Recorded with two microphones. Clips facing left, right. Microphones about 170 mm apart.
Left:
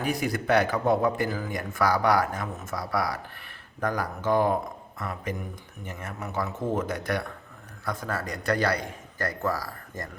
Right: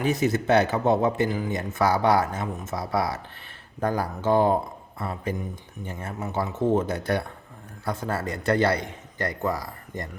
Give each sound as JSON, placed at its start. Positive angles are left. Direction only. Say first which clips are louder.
{"t": 0.0, "sound": "speech", "louder": "right 4 dB", "side_deg": -25}